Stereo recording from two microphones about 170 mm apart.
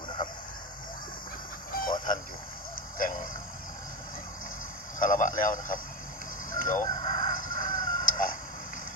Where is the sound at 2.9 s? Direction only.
50° left (ahead or behind).